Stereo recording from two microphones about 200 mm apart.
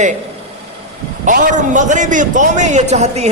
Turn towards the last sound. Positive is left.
turn(degrees=-35)  # may be behind; listen again after turning